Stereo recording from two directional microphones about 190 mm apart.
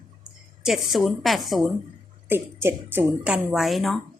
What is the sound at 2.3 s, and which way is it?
A woman's voice, 10° right (ahead or behind).